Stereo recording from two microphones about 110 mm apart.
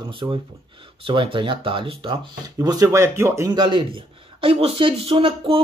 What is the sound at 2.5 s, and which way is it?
Speech, 35° right (ahead or behind).